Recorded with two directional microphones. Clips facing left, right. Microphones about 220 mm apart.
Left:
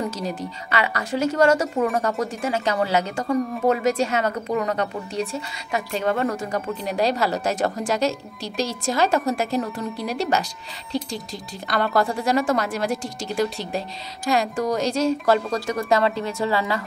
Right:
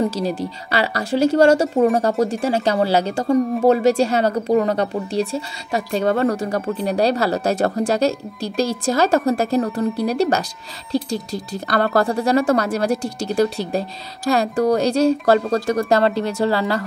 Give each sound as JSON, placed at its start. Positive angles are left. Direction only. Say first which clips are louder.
{"t": 0.4, "sound": "speech", "louder": "right 4 dB", "side_deg": -35}
{"t": 11.7, "sound": "speech", "louder": "right 4 dB", "side_deg": -40}